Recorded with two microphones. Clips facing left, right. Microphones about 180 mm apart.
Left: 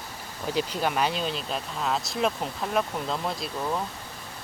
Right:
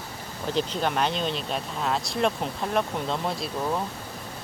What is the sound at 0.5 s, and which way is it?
Speech, 5° left (ahead or behind).